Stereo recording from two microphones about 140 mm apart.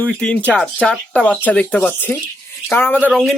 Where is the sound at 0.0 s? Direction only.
10° left (ahead or behind).